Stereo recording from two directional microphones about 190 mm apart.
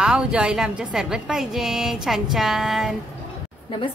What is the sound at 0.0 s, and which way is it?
A woman's voice, 5° right (ahead or behind).